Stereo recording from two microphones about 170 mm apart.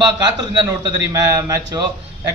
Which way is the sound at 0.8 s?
25° right (ahead or behind).